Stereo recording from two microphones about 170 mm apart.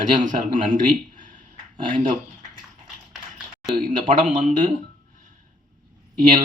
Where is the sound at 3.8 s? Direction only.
45° right (ahead or behind).